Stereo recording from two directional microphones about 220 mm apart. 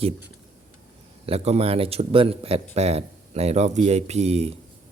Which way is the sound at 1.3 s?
30° right (ahead or behind).